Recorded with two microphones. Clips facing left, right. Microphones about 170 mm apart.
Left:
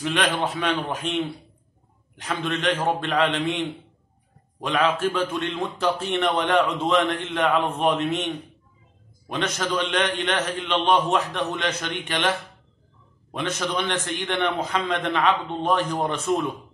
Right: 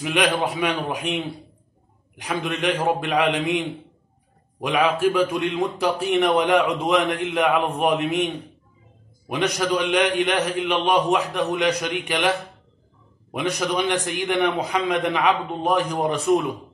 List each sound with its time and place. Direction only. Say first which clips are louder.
0.0 s a man's voice: right 2 dB; 10° right (ahead or behind)
9.3 s a man's voice: right 4 dB; 15° right (ahead or behind)